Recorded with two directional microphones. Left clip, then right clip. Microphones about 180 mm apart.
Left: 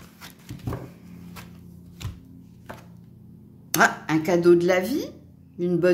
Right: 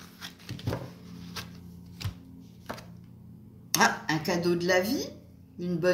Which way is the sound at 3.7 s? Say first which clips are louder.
Left 5 dB; 60° left (ahead or behind).